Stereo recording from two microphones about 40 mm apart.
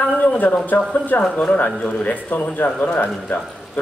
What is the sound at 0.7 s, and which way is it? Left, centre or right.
Speech, left.